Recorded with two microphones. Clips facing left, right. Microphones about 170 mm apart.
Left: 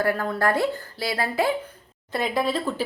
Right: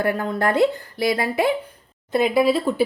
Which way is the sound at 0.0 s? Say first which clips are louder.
Right 2 dB; 20° right (ahead or behind).